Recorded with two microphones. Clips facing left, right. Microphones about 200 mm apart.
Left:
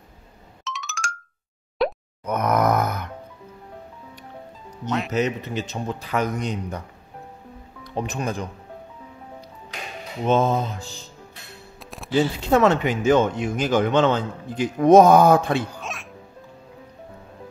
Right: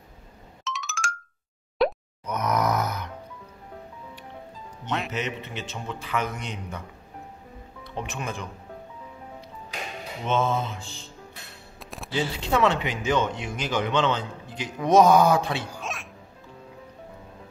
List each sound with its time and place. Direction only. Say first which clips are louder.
0.7 s music: even; centre (ahead or behind)
1.8 s plop: even; centre (ahead or behind)
2.2 s groan: left 5 dB; 55° left (ahead or behind)
4.8 s speech: left 4 dB; centre (ahead or behind)
5.1 s a man's voice: left 8 dB; 40° left (ahead or behind)
7.8 s speech: left 6 dB; 40° left (ahead or behind)
10.2 s a man's voice: left 5 dB; 40° left (ahead or behind)
11.8 s a sound: right 1 dB; centre (ahead or behind)
12.4 s speech: left 3 dB; 45° left (ahead or behind)
15.7 s music: even; centre (ahead or behind)